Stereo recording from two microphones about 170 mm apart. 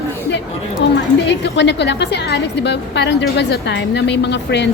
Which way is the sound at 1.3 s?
90° left.